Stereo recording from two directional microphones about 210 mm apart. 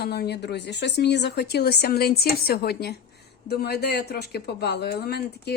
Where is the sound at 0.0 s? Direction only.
50° left (ahead or behind).